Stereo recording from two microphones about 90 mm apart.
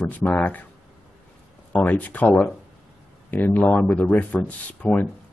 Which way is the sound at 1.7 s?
20° left (ahead or behind).